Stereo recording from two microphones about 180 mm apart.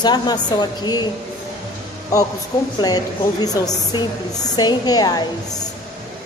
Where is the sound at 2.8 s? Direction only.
20° left (ahead or behind).